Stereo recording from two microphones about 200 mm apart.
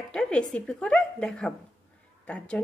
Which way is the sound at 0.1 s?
5° left (ahead or behind).